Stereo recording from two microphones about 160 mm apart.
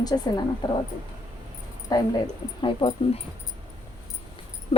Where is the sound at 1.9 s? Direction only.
25° left (ahead or behind).